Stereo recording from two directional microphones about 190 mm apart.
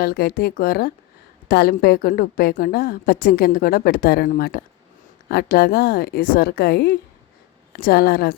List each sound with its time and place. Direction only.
0.0 s a woman's voice: 50° left (ahead or behind)